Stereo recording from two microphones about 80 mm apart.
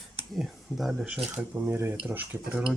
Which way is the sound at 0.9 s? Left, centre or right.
Centre.